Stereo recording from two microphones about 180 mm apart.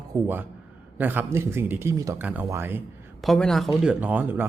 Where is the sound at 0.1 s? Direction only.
10° right (ahead or behind).